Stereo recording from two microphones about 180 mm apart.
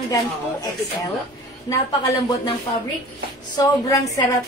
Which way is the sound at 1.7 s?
20° left (ahead or behind).